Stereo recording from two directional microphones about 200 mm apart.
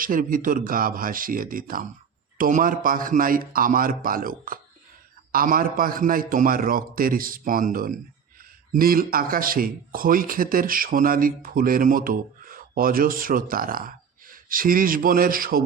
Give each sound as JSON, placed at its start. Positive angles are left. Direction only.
{"t": 0.0, "sound": "a man's voice", "side_deg": -45}